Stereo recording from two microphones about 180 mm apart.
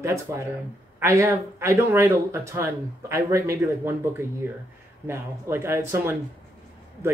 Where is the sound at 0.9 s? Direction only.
15° right (ahead or behind).